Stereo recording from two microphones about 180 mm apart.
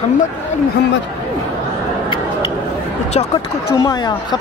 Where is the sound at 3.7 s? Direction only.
20° left (ahead or behind).